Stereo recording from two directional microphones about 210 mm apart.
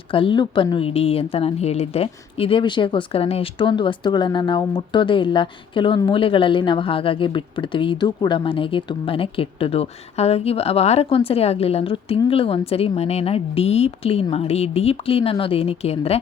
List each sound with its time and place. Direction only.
0.1 s a woman's voice: 25° left (ahead or behind)